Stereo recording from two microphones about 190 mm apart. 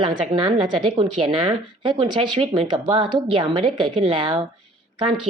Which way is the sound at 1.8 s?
25° right (ahead or behind).